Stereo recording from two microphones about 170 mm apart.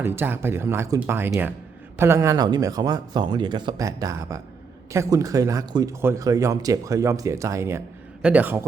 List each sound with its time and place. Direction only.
0.0 s speech: 15° right (ahead or behind)